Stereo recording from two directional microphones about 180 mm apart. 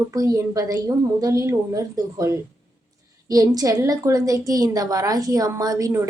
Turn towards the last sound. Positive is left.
turn(degrees=-15)  # may be behind; listen again after turning